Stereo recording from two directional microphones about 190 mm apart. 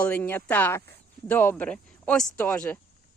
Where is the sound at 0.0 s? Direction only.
10° left (ahead or behind).